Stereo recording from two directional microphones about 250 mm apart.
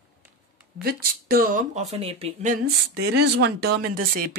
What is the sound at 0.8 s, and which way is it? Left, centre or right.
Speech, right.